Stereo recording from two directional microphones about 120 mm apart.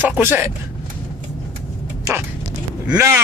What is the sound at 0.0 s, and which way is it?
Speech, 20° right (ahead or behind).